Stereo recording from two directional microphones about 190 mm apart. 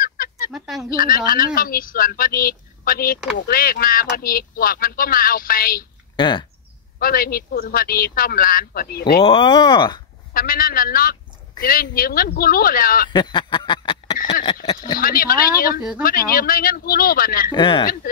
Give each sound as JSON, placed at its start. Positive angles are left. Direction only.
{"t": 0.0, "sound": "fowl", "side_deg": 50}
{"t": 0.5, "sound": "fowl", "side_deg": 0}
{"t": 0.8, "sound": "speech", "side_deg": 50}
{"t": 6.1, "sound": "speech", "side_deg": 25}
{"t": 7.0, "sound": "speech", "side_deg": 50}
{"t": 9.2, "sound": "speech", "side_deg": 25}
{"t": 10.3, "sound": "speech", "side_deg": 50}
{"t": 13.1, "sound": "a sound", "side_deg": 25}
{"t": 15.0, "sound": "speech", "side_deg": 50}
{"t": 17.5, "sound": "speech", "side_deg": 25}